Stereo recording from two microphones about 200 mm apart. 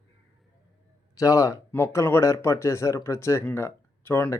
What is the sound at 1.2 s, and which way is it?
Speech, 15° left (ahead or behind).